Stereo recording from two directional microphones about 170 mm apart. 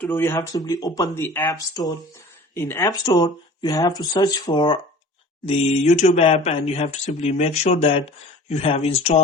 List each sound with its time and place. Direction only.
0.0 s speech: 15° left (ahead or behind)
5.5 s speech: 40° left (ahead or behind)